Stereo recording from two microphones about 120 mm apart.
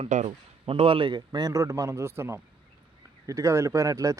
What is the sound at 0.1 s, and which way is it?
Speech, 90° right.